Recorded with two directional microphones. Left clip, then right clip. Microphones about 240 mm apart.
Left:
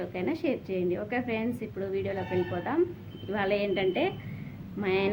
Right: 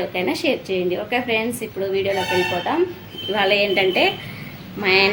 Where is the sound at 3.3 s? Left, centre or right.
Centre.